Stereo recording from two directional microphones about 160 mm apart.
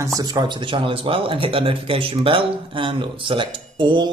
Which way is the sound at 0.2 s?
25° right (ahead or behind).